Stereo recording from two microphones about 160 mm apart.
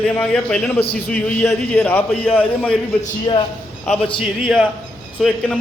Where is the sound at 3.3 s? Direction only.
30° left (ahead or behind).